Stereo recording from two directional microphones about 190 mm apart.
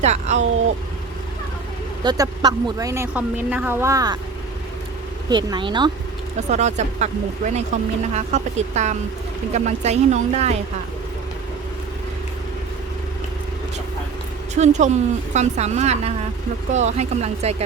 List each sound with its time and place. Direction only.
0.0 s a woman's voice: 35° right (ahead or behind)
2.0 s speech: 20° right (ahead or behind)
5.3 s speech: 25° right (ahead or behind)
6.5 s a woman's voice: 35° right (ahead or behind)
14.5 s a woman's voice: 40° right (ahead or behind)